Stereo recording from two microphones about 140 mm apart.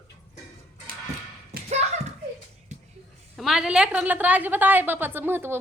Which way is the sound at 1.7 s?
50° right (ahead or behind).